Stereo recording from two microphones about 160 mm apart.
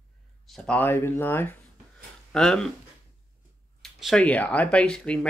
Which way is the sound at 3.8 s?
Centre (ahead or behind).